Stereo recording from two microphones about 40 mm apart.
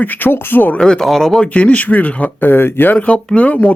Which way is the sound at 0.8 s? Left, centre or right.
Centre.